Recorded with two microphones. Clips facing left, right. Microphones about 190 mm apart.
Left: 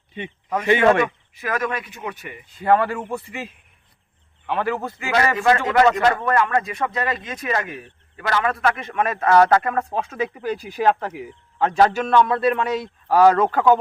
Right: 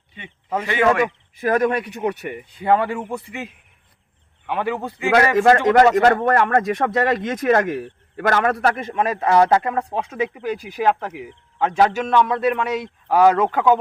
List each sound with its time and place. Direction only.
0.6 s a man's voice: 20° left (ahead or behind)
1.4 s speech: 35° right (ahead or behind)
1.8 s a man's voice: 60° right (ahead or behind)
2.6 s speech: 15° right (ahead or behind)
5.1 s speech: 50° right (ahead or behind)
6.6 s speech: 75° right (ahead or behind); by 8.9 s 45° right (ahead or behind)
8.9 s speech: 20° right (ahead or behind)
10.5 s a man's voice: 5° right (ahead or behind)
11.9 s speech: 15° right (ahead or behind)